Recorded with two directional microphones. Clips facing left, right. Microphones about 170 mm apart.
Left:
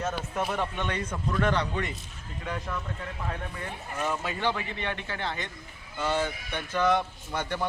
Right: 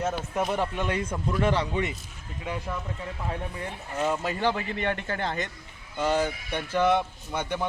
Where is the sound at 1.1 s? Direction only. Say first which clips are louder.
Right 1 dB; 20° right (ahead or behind).